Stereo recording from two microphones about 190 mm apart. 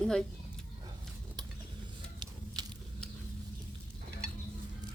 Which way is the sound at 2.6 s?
20° right (ahead or behind).